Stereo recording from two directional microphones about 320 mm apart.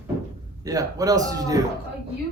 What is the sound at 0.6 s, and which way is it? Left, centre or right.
Speech, centre.